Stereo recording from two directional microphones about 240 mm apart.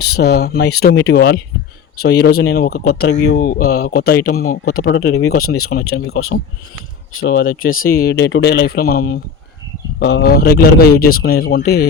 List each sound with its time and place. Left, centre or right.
0.0 s speech: left
5.4 s speech: left
7.2 s speech: left